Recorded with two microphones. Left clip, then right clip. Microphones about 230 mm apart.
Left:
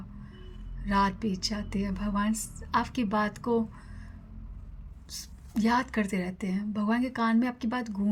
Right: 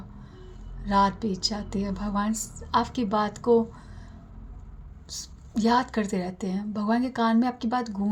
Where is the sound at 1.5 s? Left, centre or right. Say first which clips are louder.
Right 3 dB; left.